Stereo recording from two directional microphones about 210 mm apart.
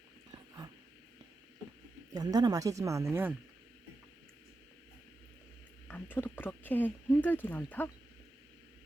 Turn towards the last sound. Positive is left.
turn(degrees=10)  # may be behind; listen again after turning